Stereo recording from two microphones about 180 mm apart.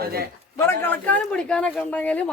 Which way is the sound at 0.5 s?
15° left (ahead or behind).